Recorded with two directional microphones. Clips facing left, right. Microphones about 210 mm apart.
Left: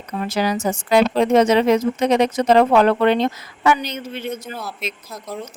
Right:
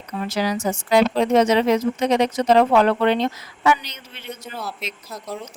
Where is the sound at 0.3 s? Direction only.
55° left (ahead or behind).